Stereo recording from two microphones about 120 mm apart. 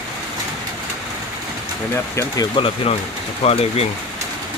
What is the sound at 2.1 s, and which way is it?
Speech, 30° left (ahead or behind).